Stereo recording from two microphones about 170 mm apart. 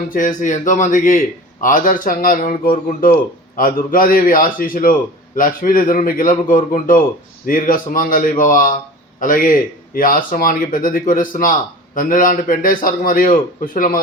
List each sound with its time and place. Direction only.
0.1 s speech: 50° left (ahead or behind)